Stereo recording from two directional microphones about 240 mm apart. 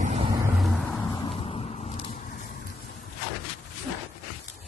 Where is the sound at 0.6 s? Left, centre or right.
Centre.